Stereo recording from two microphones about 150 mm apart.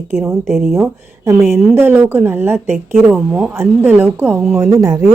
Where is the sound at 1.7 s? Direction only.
15° right (ahead or behind).